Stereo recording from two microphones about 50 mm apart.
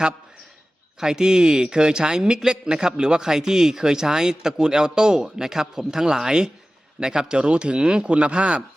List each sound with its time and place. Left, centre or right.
0.9 s speech: centre